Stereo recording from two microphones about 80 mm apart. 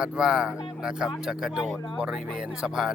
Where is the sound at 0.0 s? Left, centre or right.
Centre.